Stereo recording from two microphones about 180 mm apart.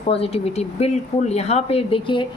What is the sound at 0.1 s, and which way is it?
Speech, 35° left (ahead or behind).